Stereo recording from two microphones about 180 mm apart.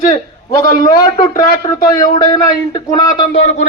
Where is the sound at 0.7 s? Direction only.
50° left (ahead or behind).